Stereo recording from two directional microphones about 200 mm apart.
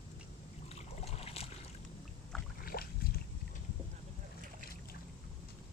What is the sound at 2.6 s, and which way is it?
Boat, 50° left (ahead or behind).